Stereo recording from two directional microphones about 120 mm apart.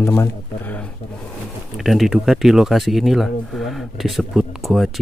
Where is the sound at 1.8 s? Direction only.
Centre (ahead or behind).